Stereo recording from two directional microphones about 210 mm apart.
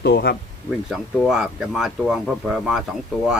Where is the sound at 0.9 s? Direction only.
Centre (ahead or behind).